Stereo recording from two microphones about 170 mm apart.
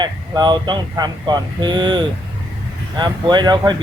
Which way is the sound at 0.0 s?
25° right (ahead or behind).